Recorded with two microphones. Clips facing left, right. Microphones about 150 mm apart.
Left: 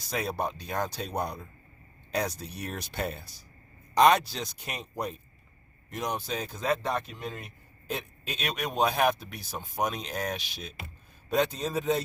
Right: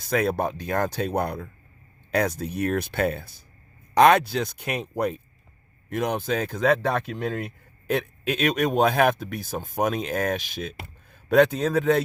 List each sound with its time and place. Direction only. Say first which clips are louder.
0.0 s speech: right 7 dB; 55° right (ahead or behind)